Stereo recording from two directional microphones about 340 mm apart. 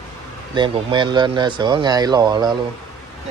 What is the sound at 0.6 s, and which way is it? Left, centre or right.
Speech, centre.